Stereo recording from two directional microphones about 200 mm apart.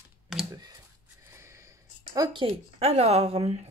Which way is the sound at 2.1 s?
20° right (ahead or behind).